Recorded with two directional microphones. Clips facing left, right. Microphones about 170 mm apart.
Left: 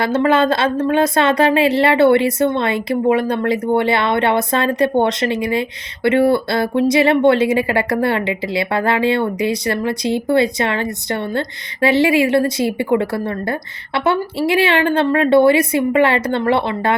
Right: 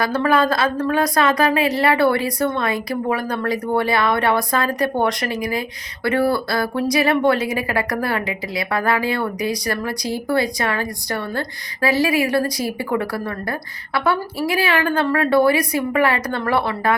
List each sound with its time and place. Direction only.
0.0 s a woman's voice: 25° left (ahead or behind)